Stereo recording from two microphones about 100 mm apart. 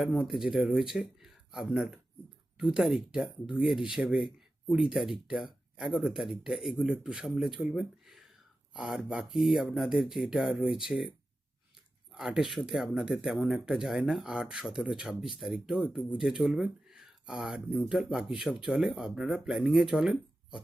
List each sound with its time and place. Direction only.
0.1 s speech: 10° right (ahead or behind)
12.1 s speech: 5° right (ahead or behind)